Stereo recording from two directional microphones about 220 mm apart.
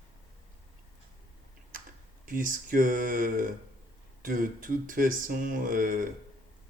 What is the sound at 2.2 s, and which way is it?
Speech, 40° right (ahead or behind).